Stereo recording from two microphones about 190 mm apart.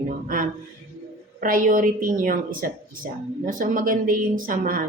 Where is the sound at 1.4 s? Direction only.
45° right (ahead or behind).